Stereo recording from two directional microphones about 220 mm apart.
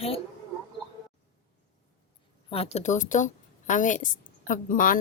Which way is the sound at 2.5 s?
30° left (ahead or behind).